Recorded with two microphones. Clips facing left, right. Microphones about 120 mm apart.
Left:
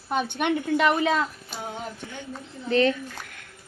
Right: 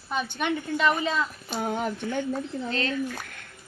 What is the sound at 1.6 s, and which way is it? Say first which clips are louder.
Speech: right 6 dB; 60° right (ahead or behind).